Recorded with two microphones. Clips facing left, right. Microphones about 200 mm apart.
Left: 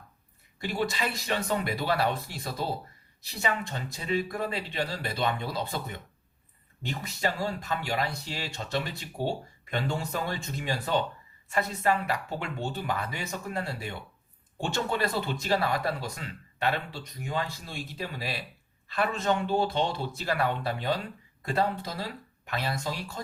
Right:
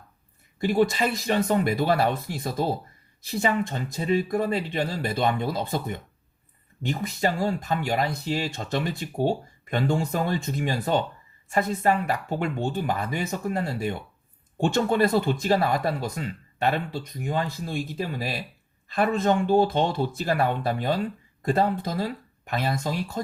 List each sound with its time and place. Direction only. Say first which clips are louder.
0.6 s speech: right 8 dB; 50° right (ahead or behind)
7.0 s speech: right 5 dB; 50° right (ahead or behind)